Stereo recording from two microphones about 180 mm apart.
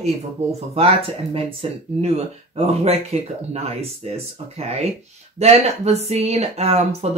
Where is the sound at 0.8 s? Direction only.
35° right (ahead or behind).